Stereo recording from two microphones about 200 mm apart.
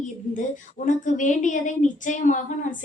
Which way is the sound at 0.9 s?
40° left (ahead or behind).